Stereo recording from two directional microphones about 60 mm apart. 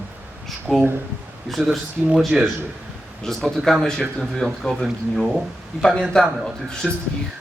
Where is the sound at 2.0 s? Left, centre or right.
Centre.